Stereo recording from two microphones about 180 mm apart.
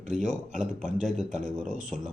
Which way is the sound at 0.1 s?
45° right (ahead or behind).